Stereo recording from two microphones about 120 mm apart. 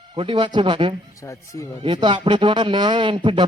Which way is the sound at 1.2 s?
25° left (ahead or behind).